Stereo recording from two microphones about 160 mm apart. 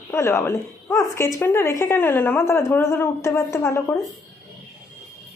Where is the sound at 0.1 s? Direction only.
15° left (ahead or behind).